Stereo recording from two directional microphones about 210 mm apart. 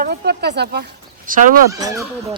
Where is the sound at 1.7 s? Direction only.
15° right (ahead or behind).